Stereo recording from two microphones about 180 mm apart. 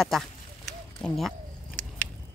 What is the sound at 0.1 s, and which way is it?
Speech, centre (ahead or behind).